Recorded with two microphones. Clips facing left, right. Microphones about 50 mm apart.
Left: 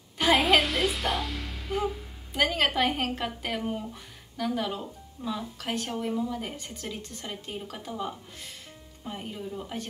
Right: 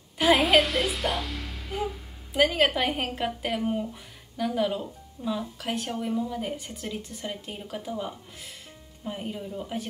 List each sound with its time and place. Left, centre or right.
0.2 s speech: centre